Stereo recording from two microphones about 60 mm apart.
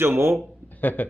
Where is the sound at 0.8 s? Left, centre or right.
Left.